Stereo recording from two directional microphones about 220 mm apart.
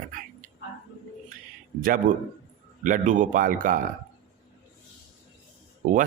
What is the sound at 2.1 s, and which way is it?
Speech, 35° right (ahead or behind).